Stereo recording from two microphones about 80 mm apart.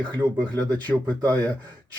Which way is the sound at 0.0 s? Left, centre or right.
Right.